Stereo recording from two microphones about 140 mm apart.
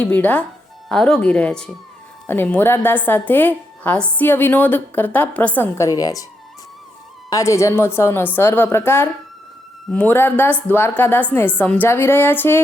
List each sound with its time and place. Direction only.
0.0 s a woman's voice: 10° left (ahead or behind)
7.3 s a woman's voice: 20° left (ahead or behind)